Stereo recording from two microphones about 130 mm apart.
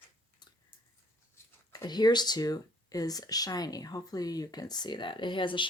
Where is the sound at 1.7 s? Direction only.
30° left (ahead or behind).